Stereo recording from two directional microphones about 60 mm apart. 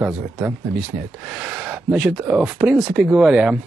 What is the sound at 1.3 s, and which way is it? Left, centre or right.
Speech, centre.